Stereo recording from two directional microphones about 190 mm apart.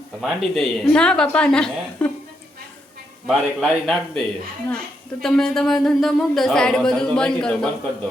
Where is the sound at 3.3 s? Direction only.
Centre (ahead or behind).